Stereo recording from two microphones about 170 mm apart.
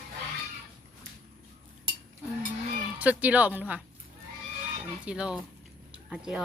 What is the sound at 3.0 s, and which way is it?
Speech, 10° right (ahead or behind).